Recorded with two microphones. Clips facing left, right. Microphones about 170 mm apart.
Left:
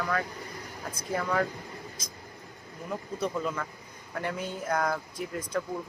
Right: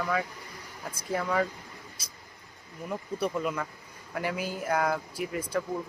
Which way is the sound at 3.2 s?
10° right (ahead or behind).